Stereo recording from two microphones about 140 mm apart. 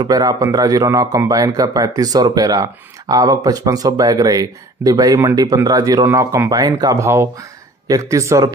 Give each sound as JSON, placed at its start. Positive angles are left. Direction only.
{"t": 0.0, "sound": "speech", "side_deg": -25}